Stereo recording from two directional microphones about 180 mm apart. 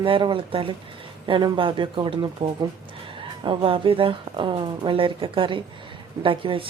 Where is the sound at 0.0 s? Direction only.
30° right (ahead or behind).